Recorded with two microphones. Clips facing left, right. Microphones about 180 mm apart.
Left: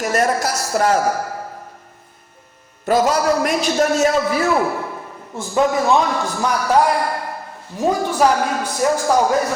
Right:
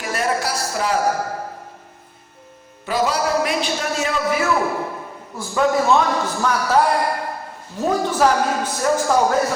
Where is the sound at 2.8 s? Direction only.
45° left (ahead or behind).